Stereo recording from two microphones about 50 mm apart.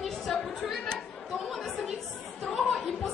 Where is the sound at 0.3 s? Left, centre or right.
Centre.